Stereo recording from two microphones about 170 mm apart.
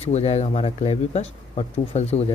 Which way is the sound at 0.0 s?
40° left (ahead or behind).